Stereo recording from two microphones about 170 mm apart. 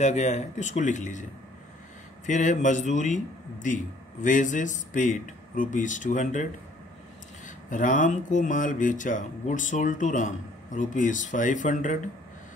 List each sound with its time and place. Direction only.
0.0 s speech: 40° left (ahead or behind)
2.2 s speech: 45° left (ahead or behind)
7.4 s speech: 50° left (ahead or behind)